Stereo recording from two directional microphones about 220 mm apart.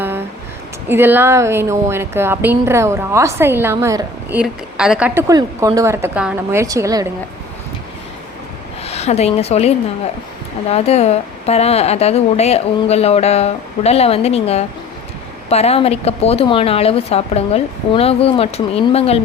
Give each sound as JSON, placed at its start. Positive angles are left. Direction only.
{"t": 0.9, "sound": "a woman's voice", "side_deg": -10}
{"t": 8.8, "sound": "a woman's voice", "side_deg": 30}